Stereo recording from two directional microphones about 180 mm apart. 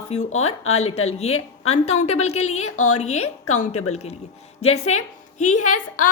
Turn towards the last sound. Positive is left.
turn(degrees=45)  # may be behind; listen again after turning